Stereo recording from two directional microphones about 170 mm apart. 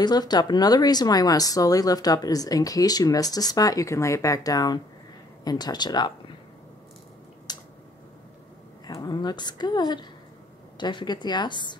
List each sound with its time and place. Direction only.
0.0 s speech: 25° left (ahead or behind)
7.5 s a sound: 25° left (ahead or behind)
8.8 s speech: 25° left (ahead or behind)